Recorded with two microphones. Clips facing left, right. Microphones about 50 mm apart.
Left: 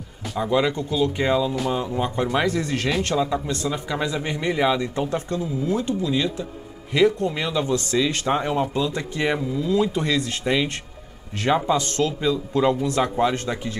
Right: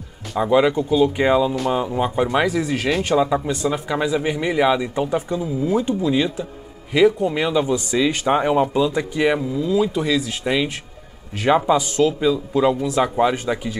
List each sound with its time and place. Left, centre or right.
0.4 s speech: centre